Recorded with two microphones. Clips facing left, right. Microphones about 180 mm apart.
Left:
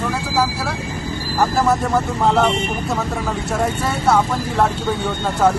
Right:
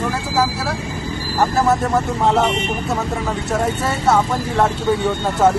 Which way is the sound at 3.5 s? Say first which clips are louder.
Right 1 dB; centre (ahead or behind).